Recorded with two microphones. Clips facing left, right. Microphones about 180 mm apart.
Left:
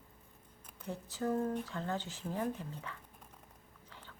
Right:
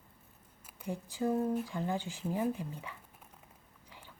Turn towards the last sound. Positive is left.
turn(degrees=-10)  # may be behind; listen again after turning